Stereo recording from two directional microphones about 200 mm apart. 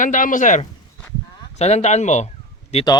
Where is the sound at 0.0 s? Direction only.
40° left (ahead or behind).